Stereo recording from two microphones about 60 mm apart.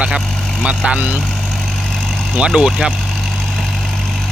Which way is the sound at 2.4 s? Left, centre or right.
Centre.